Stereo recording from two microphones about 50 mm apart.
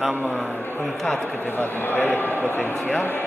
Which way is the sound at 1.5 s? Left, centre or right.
Left.